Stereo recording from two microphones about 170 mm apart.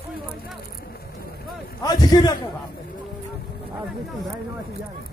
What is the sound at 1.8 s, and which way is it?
Speech, 20° left (ahead or behind).